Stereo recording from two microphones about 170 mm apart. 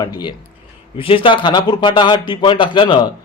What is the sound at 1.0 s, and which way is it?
A man's voice, 30° left (ahead or behind).